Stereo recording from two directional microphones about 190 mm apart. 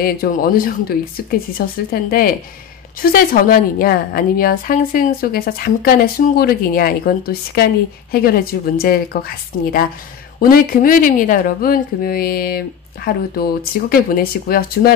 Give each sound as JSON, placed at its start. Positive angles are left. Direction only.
{"t": 0.0, "sound": "a woman's voice", "side_deg": 50}